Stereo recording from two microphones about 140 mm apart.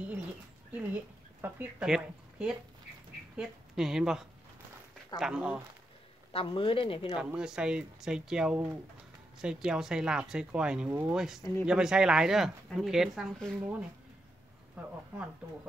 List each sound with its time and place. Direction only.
0.7 s a woman's voice: 10° right (ahead or behind)
6.3 s speech: 40° left (ahead or behind)
7.2 s speech: 5° right (ahead or behind)
11.1 s speech: 5° right (ahead or behind)